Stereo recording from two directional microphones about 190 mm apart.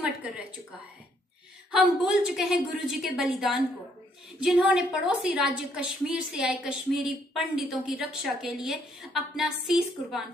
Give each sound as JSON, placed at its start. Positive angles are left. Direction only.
{"t": 1.7, "sound": "a woman's voice", "side_deg": -5}